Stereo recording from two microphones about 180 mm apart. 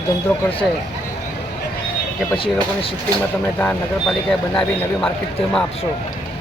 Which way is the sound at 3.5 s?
5° left (ahead or behind).